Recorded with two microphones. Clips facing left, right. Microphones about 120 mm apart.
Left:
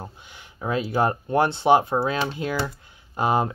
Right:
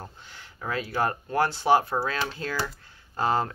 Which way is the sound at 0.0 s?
15° left (ahead or behind).